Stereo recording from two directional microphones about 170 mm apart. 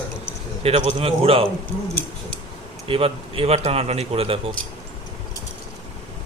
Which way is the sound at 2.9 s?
35° right (ahead or behind).